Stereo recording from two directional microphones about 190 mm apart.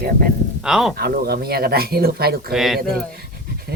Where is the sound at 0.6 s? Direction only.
Centre (ahead or behind).